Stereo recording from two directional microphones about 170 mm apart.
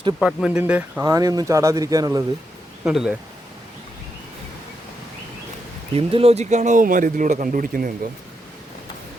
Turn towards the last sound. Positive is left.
turn(degrees=-55)  # may be behind; listen again after turning